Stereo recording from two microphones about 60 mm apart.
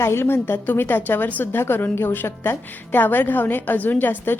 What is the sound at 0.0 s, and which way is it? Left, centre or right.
A woman's voice, left.